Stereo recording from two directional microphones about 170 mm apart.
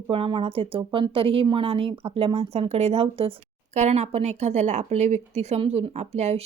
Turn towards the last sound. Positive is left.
turn(degrees=-40)  # may be behind; listen again after turning